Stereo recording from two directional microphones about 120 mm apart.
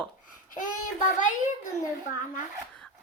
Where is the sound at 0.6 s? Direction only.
90° left.